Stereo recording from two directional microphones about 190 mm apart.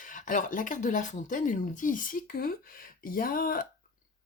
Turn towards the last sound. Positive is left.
turn(degrees=45)  # may be behind; listen again after turning